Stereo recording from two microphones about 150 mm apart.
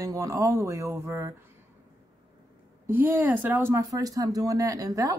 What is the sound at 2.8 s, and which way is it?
A woman's voice, 15° right (ahead or behind).